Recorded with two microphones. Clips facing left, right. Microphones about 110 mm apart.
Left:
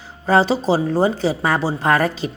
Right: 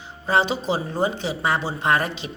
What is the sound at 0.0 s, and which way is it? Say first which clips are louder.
A woman's voice: left 5 dB; 40° left (ahead or behind).